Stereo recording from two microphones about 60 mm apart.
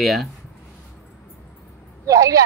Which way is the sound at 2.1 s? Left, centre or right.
Right.